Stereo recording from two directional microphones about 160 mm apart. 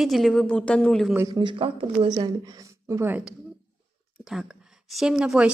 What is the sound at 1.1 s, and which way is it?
Speech, 15° right (ahead or behind).